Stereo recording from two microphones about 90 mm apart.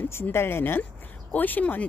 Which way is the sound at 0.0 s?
25° left (ahead or behind).